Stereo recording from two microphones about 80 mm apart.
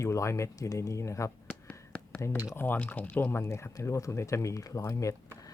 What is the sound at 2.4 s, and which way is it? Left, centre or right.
Speech, left.